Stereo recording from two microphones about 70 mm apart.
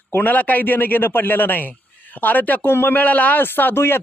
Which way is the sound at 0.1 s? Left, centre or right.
Left.